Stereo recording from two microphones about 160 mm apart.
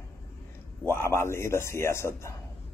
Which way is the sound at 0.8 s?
15° left (ahead or behind).